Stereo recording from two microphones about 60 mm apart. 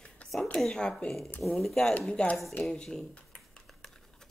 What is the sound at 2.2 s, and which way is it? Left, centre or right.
Speech, centre.